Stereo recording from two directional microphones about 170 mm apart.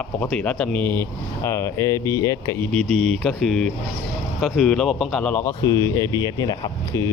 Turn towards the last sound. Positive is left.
turn(degrees=20)  # may be behind; listen again after turning